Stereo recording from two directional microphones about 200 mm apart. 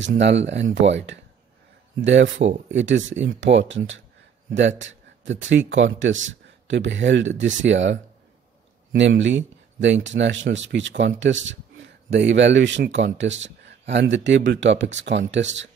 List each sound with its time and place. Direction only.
0.0 s speech: 60° right (ahead or behind)
2.3 s speech: 35° right (ahead or behind)
2.7 s speech: 70° right (ahead or behind)